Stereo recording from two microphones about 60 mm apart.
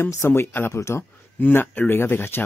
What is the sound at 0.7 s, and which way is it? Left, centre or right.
Speech, left.